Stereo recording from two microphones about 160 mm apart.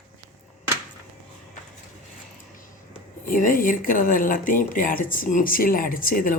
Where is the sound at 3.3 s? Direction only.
60° left (ahead or behind).